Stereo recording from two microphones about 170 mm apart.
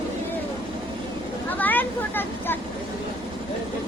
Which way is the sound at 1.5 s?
10° left (ahead or behind).